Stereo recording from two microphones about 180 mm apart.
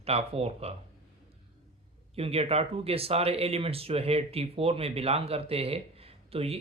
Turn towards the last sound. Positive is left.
turn(degrees=-35)  # may be behind; listen again after turning